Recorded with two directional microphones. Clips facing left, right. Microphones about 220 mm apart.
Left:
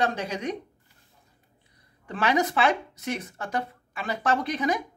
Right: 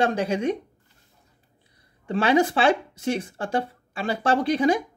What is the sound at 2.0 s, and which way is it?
Speech, 30° right (ahead or behind).